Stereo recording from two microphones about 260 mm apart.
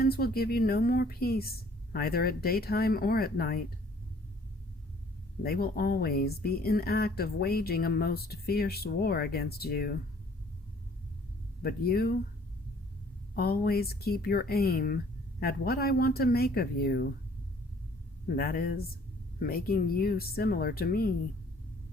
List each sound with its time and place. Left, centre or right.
0.0 s speech: left
5.4 s speech: left
11.6 s speech: left
13.3 s speech: left
18.3 s speech: left